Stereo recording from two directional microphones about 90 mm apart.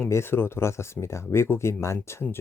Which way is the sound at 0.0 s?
30° left (ahead or behind).